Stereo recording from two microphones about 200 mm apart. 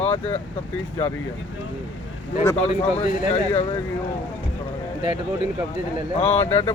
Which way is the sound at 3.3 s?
35° left (ahead or behind).